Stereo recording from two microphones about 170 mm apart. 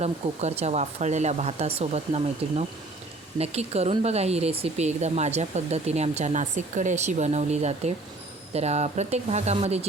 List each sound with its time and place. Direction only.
0.0 s speech: 40° right (ahead or behind)